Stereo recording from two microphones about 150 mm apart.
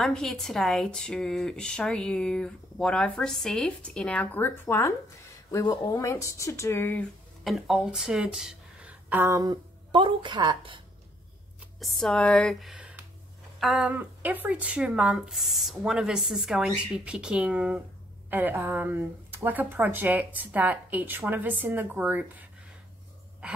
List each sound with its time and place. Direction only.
0.0 s speech: 5° left (ahead or behind)
7.4 s speech: centre (ahead or behind)
9.4 s a woman's voice: 30° right (ahead or behind)
11.8 s speech: 5° left (ahead or behind); by 22.5 s 10° right (ahead or behind)